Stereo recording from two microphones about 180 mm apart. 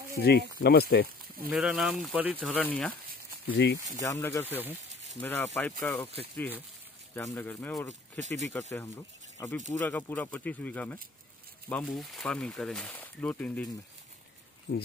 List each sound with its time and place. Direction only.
0.2 s speech: 65° left (ahead or behind)
1.5 s speech: 5° right (ahead or behind)
2.4 s speech: 5° left (ahead or behind)
3.4 s speech: 60° left (ahead or behind)
4.0 s speech: 20° left (ahead or behind)
8.2 s speech: 40° right (ahead or behind)
8.7 s speech: 20° left (ahead or behind)
14.7 s speech: 60° left (ahead or behind)